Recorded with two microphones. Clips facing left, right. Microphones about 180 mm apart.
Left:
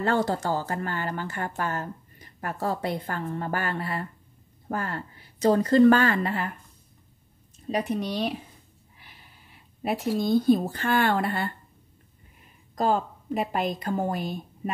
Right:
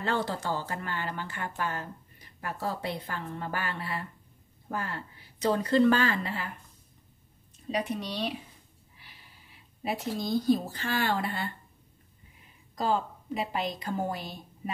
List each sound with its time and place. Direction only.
0.0 s a woman's voice: 45° left (ahead or behind)
7.7 s a woman's voice: 45° left (ahead or behind)
8.9 s snort: 50° left (ahead or behind)
9.8 s speech: 55° left (ahead or behind)
12.7 s a woman's voice: 50° left (ahead or behind)